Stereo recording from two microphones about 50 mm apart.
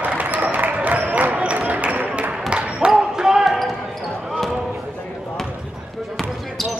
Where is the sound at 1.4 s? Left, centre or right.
Right.